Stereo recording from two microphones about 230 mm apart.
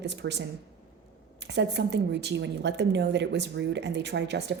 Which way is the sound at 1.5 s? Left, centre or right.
Right.